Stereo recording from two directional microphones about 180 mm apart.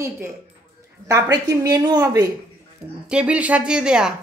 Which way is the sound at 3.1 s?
5° right (ahead or behind).